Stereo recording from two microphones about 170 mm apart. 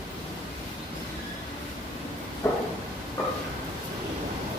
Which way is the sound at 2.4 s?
15° left (ahead or behind).